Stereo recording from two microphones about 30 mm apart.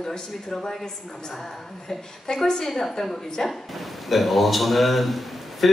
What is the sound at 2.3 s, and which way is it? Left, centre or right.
Speech, left.